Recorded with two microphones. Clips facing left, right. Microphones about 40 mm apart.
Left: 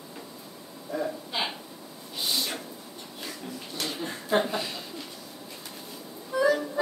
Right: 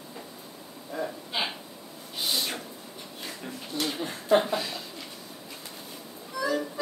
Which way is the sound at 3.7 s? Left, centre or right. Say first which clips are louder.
Right 3 dB; centre.